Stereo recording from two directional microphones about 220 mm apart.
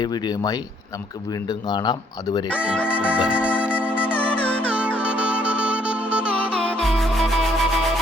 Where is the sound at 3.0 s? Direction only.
5° right (ahead or behind).